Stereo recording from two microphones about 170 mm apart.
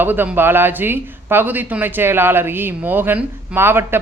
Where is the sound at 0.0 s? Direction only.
10° right (ahead or behind).